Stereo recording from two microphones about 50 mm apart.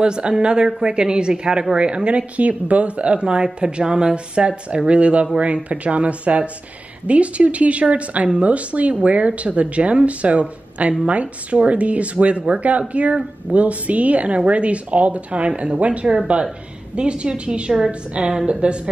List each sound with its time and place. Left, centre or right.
0.0 s speech: centre